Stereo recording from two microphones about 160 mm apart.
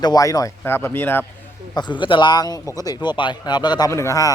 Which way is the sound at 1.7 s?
30° left (ahead or behind).